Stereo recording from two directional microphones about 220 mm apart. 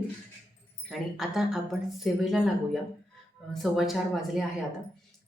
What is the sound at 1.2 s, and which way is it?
A woman's voice, centre (ahead or behind).